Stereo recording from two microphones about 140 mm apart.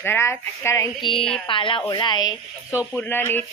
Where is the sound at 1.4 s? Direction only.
40° left (ahead or behind).